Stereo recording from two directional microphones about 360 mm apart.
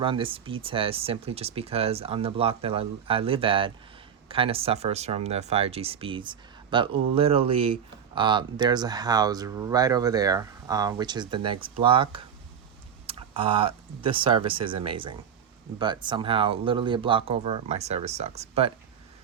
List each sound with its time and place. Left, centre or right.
0.0 s speech: centre